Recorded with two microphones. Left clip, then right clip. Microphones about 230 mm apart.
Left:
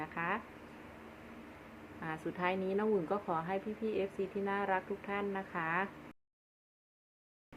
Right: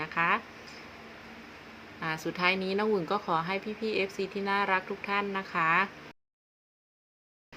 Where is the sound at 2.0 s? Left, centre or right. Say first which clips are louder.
Right 8 dB; right.